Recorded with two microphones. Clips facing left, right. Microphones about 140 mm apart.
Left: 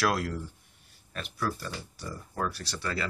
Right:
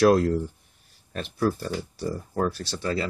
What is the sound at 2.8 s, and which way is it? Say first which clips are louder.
Speech: right 6 dB; 25° right (ahead or behind).